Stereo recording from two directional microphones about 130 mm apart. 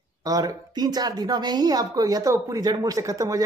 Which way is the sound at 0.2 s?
25° right (ahead or behind).